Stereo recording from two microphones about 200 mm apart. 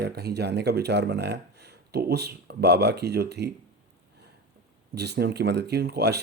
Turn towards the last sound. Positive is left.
turn(degrees=-55)  # may be behind; listen again after turning